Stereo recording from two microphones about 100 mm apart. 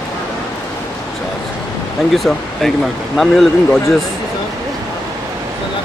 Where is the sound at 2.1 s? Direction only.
Centre (ahead or behind).